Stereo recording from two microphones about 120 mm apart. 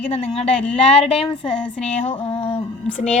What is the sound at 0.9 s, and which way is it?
Speech, 55° left (ahead or behind).